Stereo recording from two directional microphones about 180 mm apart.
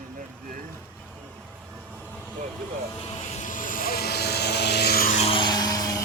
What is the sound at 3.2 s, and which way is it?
Vehicle, 45° left (ahead or behind).